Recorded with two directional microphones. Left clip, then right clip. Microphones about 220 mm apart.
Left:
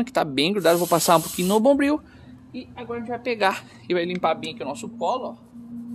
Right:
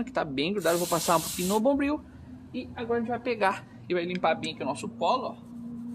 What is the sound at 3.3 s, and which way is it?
Speech, 45° left (ahead or behind).